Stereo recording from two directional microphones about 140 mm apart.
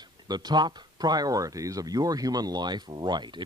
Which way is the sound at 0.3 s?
30° right (ahead or behind).